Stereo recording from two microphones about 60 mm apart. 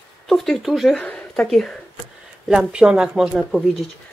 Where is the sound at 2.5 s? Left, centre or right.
Centre.